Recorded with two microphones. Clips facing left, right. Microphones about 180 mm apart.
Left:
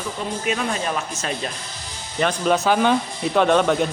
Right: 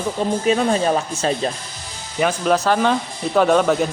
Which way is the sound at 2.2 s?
5° right (ahead or behind).